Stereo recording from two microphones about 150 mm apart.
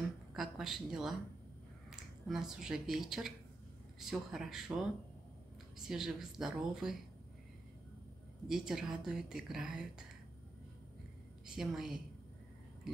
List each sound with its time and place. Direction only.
0.3 s a woman's voice: centre (ahead or behind)
5.8 s a woman's voice: 5° right (ahead or behind)
8.5 s a woman's voice: 5° right (ahead or behind)
11.4 s a woman's voice: 5° right (ahead or behind)